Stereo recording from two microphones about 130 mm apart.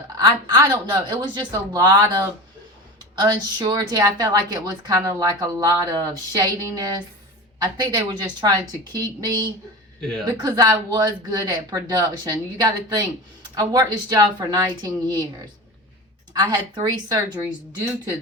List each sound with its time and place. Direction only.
0.2 s a woman's voice: 30° right (ahead or behind)
16.3 s speech: 30° right (ahead or behind)